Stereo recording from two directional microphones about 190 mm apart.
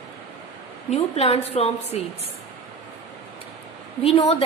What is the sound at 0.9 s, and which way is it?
A woman's voice, 35° left (ahead or behind).